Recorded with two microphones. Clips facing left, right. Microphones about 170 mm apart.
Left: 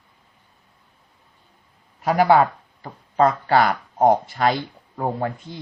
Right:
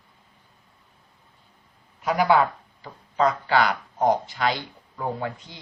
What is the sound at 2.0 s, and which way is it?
Speech, 50° left (ahead or behind).